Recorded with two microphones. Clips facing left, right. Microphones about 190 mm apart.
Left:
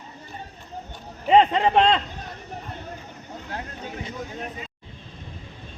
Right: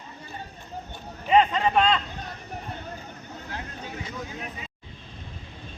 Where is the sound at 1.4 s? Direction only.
30° left (ahead or behind).